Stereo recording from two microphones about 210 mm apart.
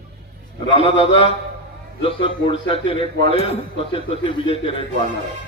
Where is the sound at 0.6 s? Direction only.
25° left (ahead or behind).